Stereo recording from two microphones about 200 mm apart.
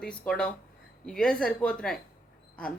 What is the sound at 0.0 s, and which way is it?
A woman's voice, 5° left (ahead or behind).